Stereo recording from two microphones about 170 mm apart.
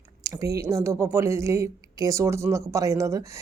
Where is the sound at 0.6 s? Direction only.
15° right (ahead or behind).